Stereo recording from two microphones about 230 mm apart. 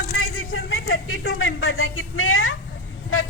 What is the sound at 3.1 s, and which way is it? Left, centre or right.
Vehicle, left.